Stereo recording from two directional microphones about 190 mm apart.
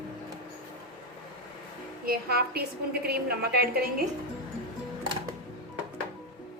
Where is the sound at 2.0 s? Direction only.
55° right (ahead or behind).